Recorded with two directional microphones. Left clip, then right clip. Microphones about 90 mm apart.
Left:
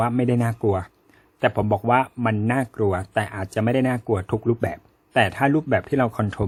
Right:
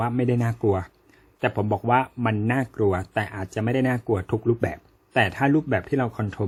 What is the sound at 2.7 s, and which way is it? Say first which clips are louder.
Speech: left 1 dB; 20° left (ahead or behind).